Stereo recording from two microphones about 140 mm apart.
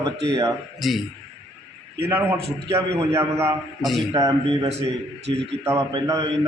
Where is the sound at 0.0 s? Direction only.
25° right (ahead or behind).